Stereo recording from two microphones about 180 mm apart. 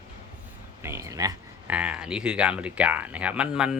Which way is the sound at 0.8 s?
15° right (ahead or behind).